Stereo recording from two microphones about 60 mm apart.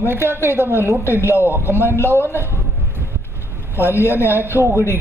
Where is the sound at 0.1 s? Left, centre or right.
Right.